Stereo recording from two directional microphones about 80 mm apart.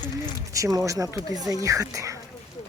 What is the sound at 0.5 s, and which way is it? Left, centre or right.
Speech, right.